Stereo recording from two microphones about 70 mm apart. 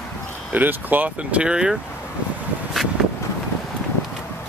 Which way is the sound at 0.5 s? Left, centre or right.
Right.